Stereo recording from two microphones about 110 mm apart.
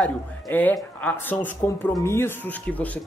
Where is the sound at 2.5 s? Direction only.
15° left (ahead or behind).